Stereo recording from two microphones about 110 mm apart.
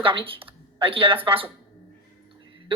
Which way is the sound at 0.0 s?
50° right (ahead or behind).